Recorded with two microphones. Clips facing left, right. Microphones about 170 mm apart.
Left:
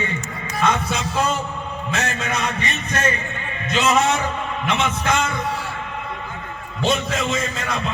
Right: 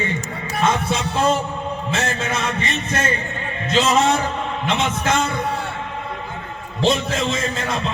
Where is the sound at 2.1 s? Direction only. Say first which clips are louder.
Right 1 dB; 35° right (ahead or behind).